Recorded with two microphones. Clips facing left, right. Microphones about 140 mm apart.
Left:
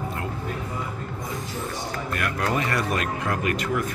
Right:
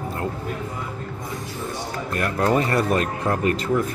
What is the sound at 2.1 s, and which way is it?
Speech, 35° right (ahead or behind).